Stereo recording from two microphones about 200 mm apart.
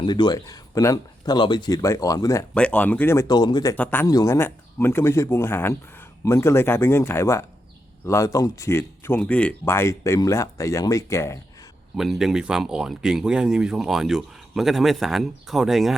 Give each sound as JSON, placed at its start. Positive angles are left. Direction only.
{"t": 0.0, "sound": "speech", "side_deg": 20}
{"t": 11.9, "sound": "speech", "side_deg": 0}